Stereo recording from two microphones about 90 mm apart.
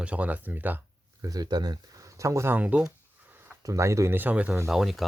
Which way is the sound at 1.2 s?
45° right (ahead or behind).